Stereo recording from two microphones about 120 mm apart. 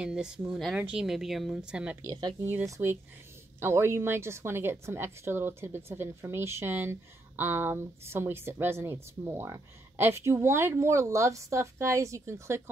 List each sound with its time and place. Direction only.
0.0 s a woman's voice: 5° right (ahead or behind)
2.0 s speech: 35° right (ahead or behind)
2.4 s a woman's voice: 20° right (ahead or behind)